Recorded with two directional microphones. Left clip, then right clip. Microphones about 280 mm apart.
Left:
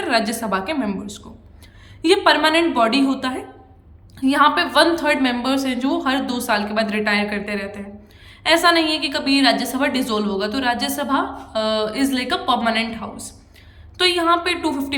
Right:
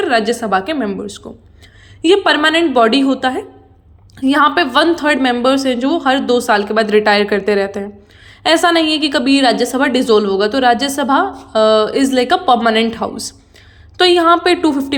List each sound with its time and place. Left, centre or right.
0.0 s a woman's voice: centre